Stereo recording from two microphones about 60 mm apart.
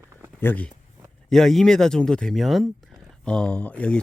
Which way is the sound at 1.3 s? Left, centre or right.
Centre.